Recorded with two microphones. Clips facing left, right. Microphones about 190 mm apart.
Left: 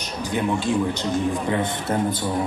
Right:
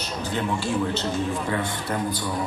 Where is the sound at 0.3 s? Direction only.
15° left (ahead or behind).